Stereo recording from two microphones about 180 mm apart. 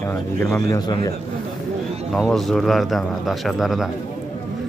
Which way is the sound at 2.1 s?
Centre (ahead or behind).